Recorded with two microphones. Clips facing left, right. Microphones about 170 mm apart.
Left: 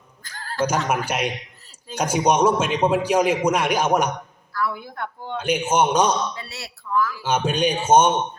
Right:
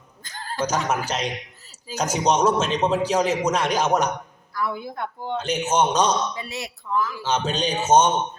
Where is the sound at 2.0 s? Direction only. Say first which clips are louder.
Left 2 dB; 10° left (ahead or behind).